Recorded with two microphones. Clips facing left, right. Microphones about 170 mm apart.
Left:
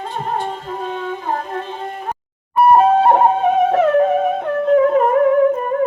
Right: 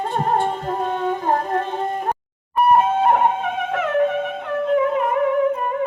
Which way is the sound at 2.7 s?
35° left (ahead or behind).